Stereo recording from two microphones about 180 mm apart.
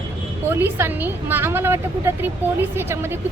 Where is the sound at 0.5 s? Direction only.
10° right (ahead or behind).